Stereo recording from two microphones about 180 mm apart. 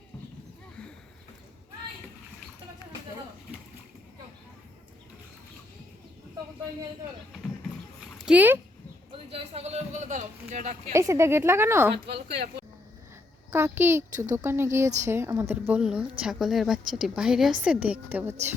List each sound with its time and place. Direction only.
8.2 s speech: 5° right (ahead or behind)
9.1 s a sound: 35° right (ahead or behind)
10.9 s a woman's voice: 15° right (ahead or behind)
13.5 s a woman's voice: 15° right (ahead or behind)